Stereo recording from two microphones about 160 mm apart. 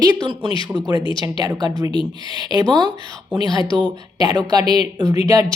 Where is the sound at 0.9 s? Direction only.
30° left (ahead or behind).